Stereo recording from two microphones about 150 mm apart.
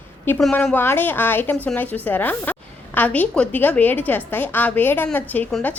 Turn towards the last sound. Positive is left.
turn(degrees=10)  # may be behind; listen again after turning